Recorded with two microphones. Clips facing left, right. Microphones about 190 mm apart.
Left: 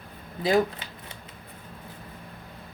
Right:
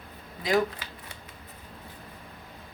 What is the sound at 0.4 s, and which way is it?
Speech, 25° left (ahead or behind).